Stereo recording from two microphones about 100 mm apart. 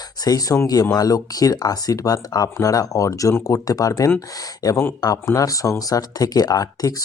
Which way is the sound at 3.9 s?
25° left (ahead or behind).